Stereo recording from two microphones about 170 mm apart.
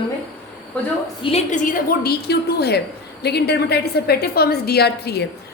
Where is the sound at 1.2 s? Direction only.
35° left (ahead or behind); by 5.2 s 70° left (ahead or behind).